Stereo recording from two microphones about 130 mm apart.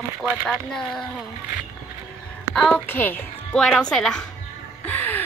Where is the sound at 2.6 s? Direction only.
5° left (ahead or behind).